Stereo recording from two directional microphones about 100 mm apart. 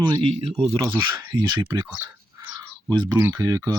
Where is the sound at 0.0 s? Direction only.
70° right (ahead or behind).